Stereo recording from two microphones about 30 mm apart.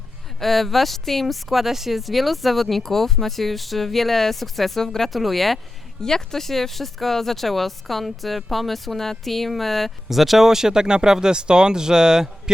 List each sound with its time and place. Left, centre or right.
0.3 s speech: centre
5.1 s speech: centre
6.0 s speech: centre; by 12.3 s right